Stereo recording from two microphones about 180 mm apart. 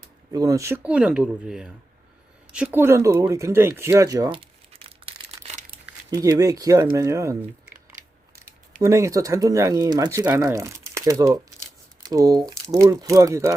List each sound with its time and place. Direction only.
0.3 s speech: 20° right (ahead or behind)
6.1 s speech: 20° right (ahead or behind)
8.8 s speech: 15° right (ahead or behind)